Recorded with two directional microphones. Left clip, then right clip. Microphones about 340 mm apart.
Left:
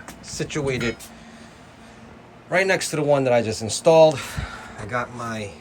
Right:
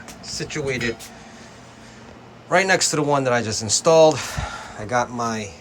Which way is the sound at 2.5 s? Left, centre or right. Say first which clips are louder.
Right 3 dB; centre.